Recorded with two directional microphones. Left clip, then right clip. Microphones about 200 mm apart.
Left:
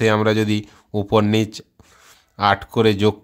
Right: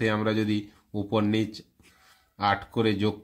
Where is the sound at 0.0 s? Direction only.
45° left (ahead or behind).